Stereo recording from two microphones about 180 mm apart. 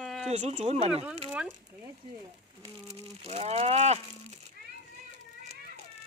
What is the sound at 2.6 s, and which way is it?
Livestock, 35° right (ahead or behind).